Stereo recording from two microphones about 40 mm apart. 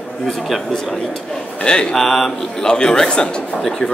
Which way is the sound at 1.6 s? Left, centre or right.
Left.